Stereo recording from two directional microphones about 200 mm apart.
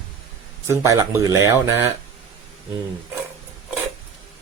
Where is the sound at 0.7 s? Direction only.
15° right (ahead or behind).